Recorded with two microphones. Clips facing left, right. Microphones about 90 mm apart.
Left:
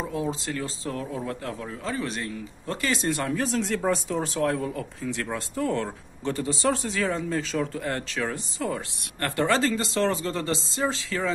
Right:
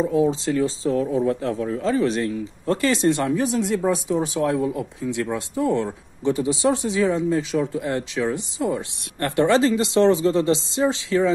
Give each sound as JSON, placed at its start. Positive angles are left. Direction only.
{"t": 0.1, "sound": "a man's voice", "side_deg": -25}
{"t": 3.4, "sound": "speech", "side_deg": -15}